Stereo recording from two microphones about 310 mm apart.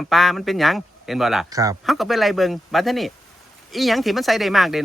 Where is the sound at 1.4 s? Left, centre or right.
Centre.